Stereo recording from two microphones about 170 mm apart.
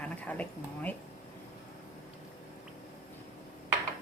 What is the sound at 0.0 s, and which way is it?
Speech, 10° left (ahead or behind).